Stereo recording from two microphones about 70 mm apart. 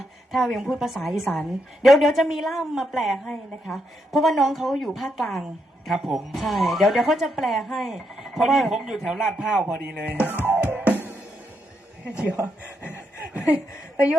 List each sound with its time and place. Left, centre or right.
0.3 s a woman's voice: centre
9.8 s speech: centre
10.4 s music: right
13.9 s speech: centre